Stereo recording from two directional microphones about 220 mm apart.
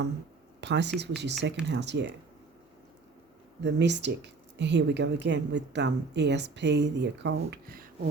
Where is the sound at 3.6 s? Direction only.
50° right (ahead or behind).